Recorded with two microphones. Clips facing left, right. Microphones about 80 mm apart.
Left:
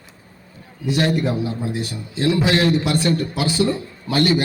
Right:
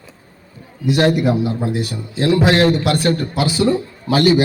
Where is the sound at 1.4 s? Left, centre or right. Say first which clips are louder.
Right 4 dB; right.